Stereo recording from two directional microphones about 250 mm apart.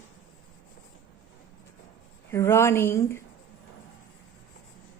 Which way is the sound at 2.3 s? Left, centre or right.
Centre.